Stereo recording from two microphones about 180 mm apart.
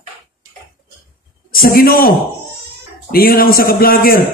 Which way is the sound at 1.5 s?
55° left (ahead or behind).